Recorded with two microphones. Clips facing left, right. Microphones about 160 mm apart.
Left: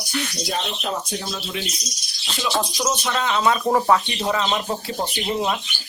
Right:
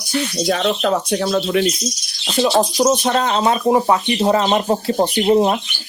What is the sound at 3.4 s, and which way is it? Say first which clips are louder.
Speech: right 1 dB; 25° right (ahead or behind).